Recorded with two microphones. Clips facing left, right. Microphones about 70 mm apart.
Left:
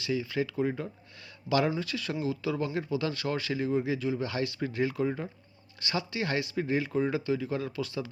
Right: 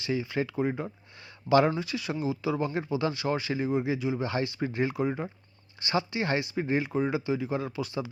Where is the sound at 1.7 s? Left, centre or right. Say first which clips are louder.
Right 1 dB; centre.